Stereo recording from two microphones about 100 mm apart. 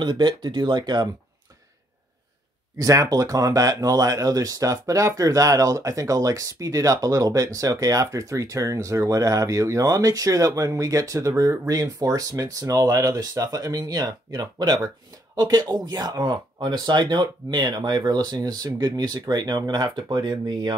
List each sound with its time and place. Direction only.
0.0 s speech: 55° right (ahead or behind)
2.8 s speech: 35° right (ahead or behind)